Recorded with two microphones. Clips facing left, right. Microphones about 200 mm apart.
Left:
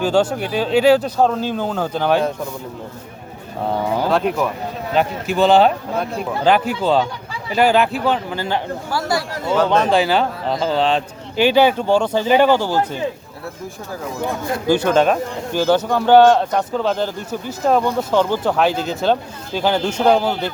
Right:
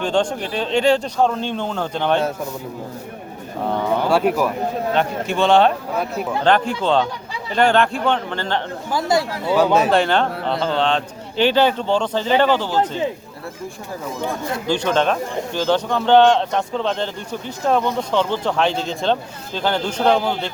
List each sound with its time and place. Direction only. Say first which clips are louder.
0.0 s speech: left 3 dB; 5° left (ahead or behind)
4.1 s speech: right 3 dB; 5° right (ahead or behind)
4.9 s speech: left 5 dB; 5° left (ahead or behind)
8.9 s speech: right 3 dB; 20° right (ahead or behind)
9.6 s speech: even; 10° right (ahead or behind)
10.0 s speech: left 1 dB; 5° left (ahead or behind)
14.7 s speech: left 4 dB; 5° left (ahead or behind)